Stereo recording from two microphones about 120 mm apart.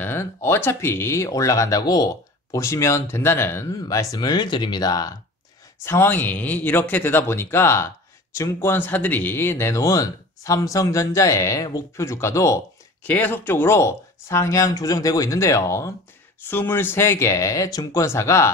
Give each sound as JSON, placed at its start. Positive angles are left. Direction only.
{"t": 0.0, "sound": "speech", "side_deg": 20}
{"t": 5.9, "sound": "speech", "side_deg": 20}
{"t": 13.0, "sound": "speech", "side_deg": 15}